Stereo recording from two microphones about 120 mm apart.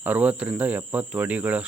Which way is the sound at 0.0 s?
10° right (ahead or behind).